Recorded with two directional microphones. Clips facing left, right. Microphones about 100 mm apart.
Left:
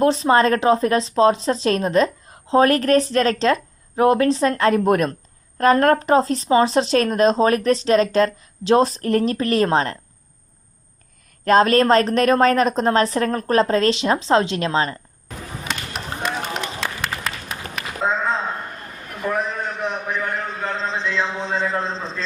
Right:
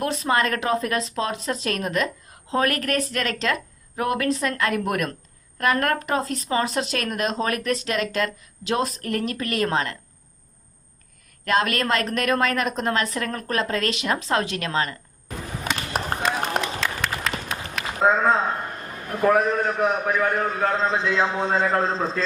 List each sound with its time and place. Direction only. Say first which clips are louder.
0.0 s speech: left 7 dB; 25° left (ahead or behind)
11.4 s speech: left 8 dB; 35° left (ahead or behind)
15.6 s a sound: right 3 dB; 50° right (ahead or behind)
16.2 s run: left 1 dB; centre (ahead or behind)
19.3 s a man's voice: right 4 dB; 45° right (ahead or behind)
20.9 s speech: right 2 dB; 10° right (ahead or behind)
21.3 s a man's voice: right 2 dB; 45° right (ahead or behind)